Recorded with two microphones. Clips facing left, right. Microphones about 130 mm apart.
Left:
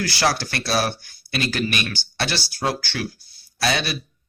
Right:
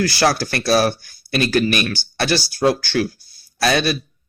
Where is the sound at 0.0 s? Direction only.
45° right (ahead or behind).